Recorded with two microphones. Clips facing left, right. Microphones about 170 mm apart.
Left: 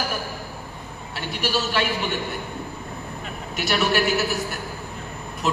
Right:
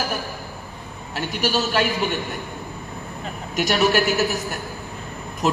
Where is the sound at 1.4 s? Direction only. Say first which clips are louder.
Right 3 dB; 40° right (ahead or behind).